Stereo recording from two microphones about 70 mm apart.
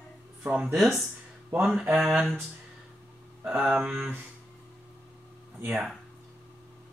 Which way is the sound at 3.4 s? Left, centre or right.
Centre.